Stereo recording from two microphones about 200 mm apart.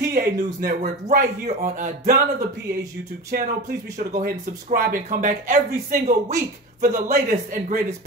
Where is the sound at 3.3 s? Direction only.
45° right (ahead or behind).